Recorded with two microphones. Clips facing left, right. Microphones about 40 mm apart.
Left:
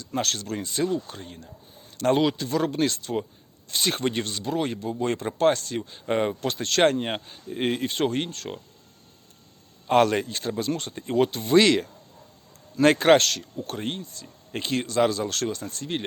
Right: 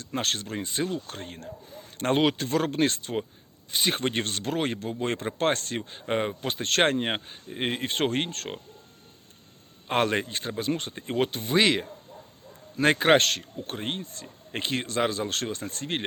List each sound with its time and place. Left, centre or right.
0.0 s speech: right
1.0 s speech: right
2.0 s speech: right
3.7 s speech: centre
3.9 s speech: right
4.2 s speech: right
6.1 s speech: centre
6.5 s speech: right
7.5 s speech: centre
7.8 s speech: right
9.8 s speech: right
11.3 s speech: centre
13.1 s speech: right